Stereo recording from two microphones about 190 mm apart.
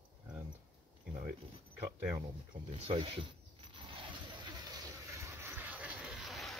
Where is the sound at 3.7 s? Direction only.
25° right (ahead or behind).